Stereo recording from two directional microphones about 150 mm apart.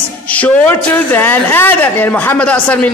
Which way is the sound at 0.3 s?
10° left (ahead or behind).